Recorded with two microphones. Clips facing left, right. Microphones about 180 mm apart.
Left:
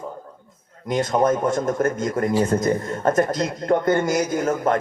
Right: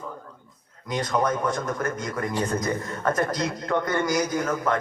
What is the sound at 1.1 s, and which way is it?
A man's voice, 25° left (ahead or behind).